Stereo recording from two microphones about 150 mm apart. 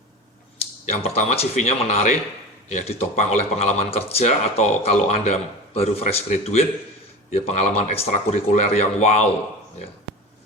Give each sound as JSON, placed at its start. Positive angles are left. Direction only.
{"t": 0.9, "sound": "speech", "side_deg": 45}